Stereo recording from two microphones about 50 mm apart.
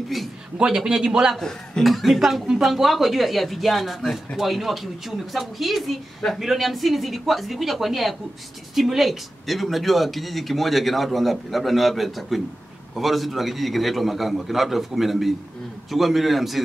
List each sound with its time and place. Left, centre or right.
0.6 s a man's voice: centre
1.4 s speech: centre